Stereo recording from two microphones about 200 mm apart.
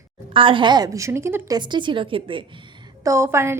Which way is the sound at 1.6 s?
25° right (ahead or behind).